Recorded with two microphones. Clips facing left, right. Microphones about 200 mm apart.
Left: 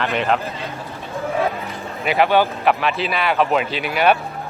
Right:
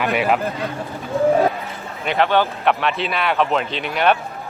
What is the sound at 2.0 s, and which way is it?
A man's voice, 10° left (ahead or behind).